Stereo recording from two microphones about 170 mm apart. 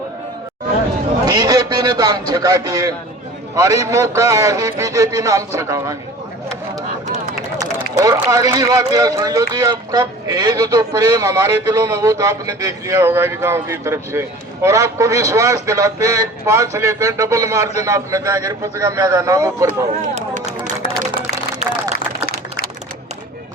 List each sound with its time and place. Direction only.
1.2 s speech: 25° right (ahead or behind)
7.8 s speech: 20° right (ahead or behind)